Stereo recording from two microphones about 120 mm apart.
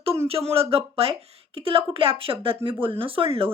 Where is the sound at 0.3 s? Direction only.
55° right (ahead or behind).